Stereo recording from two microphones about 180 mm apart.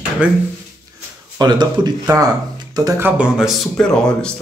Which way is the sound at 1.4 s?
25° right (ahead or behind).